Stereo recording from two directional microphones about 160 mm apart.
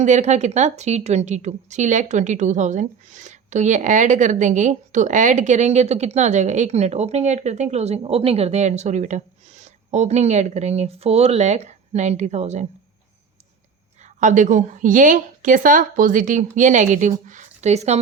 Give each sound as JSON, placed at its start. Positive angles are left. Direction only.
{"t": 0.0, "sound": "a woman's voice", "side_deg": -50}
{"t": 14.2, "sound": "a woman's voice", "side_deg": -50}